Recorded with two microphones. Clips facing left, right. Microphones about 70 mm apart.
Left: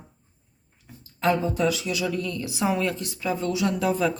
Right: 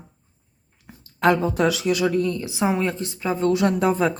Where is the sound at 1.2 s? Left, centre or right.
Right.